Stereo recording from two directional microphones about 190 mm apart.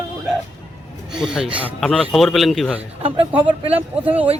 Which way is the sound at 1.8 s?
5° left (ahead or behind).